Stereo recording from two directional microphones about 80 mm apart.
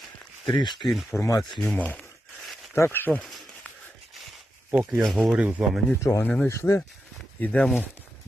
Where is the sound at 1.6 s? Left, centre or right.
Left.